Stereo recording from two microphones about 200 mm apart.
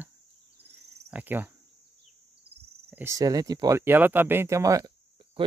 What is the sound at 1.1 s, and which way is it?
Speech, 10° right (ahead or behind).